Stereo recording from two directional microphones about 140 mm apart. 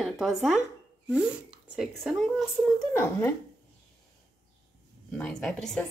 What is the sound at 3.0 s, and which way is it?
Speech, 15° left (ahead or behind).